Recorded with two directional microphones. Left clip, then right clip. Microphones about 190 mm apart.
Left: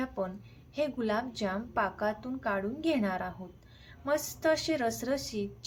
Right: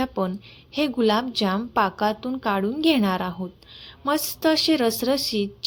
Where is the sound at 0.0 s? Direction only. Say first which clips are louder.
Right 9 dB; 40° right (ahead or behind).